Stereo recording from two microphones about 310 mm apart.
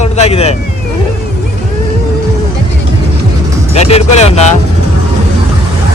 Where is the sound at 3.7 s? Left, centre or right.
Centre.